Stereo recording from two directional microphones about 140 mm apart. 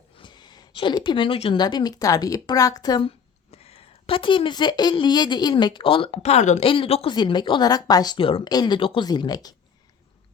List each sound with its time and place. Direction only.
0.2 s speech: 30° left (ahead or behind)
3.5 s speech: 45° left (ahead or behind)
6.7 s speech: 40° left (ahead or behind)